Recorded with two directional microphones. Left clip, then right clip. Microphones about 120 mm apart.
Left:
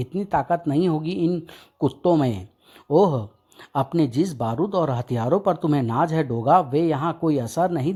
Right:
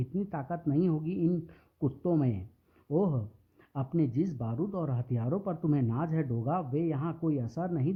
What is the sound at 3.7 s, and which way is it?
Speech, 45° left (ahead or behind).